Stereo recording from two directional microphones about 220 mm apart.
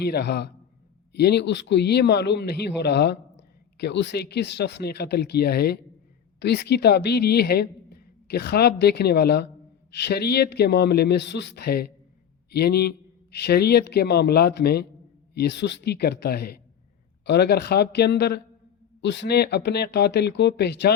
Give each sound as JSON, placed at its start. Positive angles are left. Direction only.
{"t": 0.0, "sound": "a man's voice", "side_deg": 45}